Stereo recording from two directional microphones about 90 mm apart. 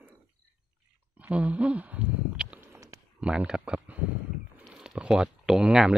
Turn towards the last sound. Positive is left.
turn(degrees=-5)  # may be behind; listen again after turning